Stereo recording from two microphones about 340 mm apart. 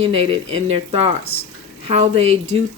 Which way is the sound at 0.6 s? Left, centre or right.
Centre.